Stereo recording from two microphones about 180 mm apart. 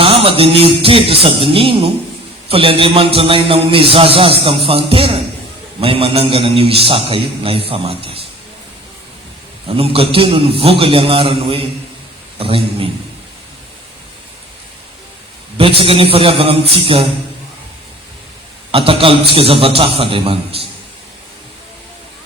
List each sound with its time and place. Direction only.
0.0 s music: 30° right (ahead or behind)
2.5 s a man's voice: 30° right (ahead or behind)
9.6 s a man's voice: 30° right (ahead or behind)
15.5 s a man's voice: 30° right (ahead or behind)
18.7 s a man's voice: 30° right (ahead or behind)